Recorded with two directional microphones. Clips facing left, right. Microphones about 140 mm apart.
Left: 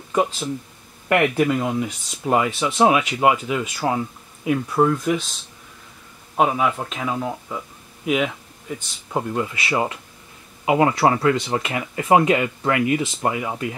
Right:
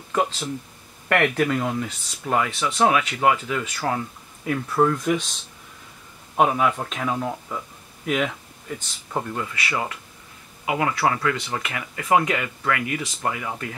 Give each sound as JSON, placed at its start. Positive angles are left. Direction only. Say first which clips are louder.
{"t": 0.1, "sound": "speech", "louder": "left 3 dB", "side_deg": 10}
{"t": 2.2, "sound": "speech", "louder": "left 3 dB", "side_deg": 20}
{"t": 6.3, "sound": "speech", "louder": "even", "side_deg": 0}
{"t": 9.3, "sound": "speech", "louder": "left 5 dB", "side_deg": 20}